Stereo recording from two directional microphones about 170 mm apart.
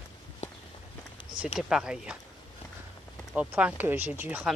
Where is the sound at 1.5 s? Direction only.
5° right (ahead or behind).